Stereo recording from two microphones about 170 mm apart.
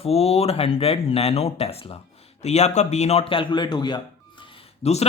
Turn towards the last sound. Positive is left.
turn(degrees=40)  # may be behind; listen again after turning